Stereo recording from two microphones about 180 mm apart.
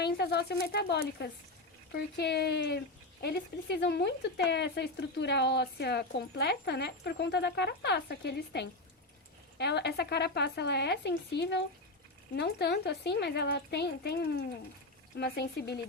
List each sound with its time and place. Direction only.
0.0 s speech: 65° left (ahead or behind)